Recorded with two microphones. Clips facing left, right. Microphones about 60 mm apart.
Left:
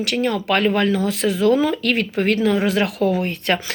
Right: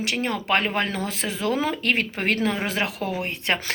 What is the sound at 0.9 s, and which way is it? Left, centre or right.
Speech, right.